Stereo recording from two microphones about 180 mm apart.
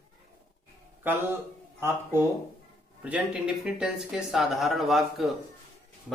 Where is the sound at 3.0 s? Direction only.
5° right (ahead or behind).